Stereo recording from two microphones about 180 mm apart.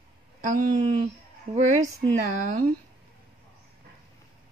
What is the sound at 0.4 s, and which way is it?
Speech, 45° right (ahead or behind).